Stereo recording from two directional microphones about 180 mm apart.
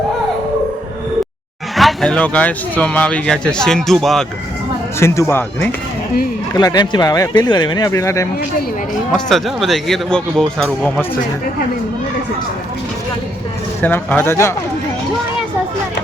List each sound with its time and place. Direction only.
1.7 s speech: centre (ahead or behind)
4.9 s speech: 15° left (ahead or behind)
9.1 s speech: centre (ahead or behind)
13.8 s speech: 10° left (ahead or behind)